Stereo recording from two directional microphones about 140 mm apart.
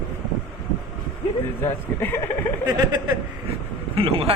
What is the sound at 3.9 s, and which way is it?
Speech, 40° right (ahead or behind).